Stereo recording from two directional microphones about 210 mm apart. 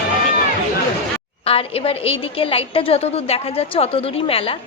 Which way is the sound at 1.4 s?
25° left (ahead or behind).